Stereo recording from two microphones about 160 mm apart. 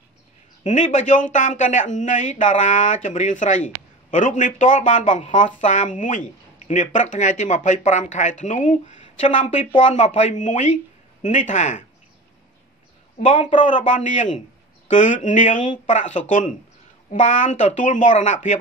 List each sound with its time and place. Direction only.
0.7 s speech: 50° left (ahead or behind)
13.2 s speech: 50° left (ahead or behind)